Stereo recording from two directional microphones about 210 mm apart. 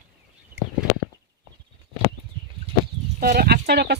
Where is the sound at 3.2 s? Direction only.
45° right (ahead or behind).